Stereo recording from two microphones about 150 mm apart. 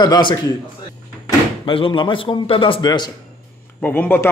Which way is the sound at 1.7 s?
35° left (ahead or behind).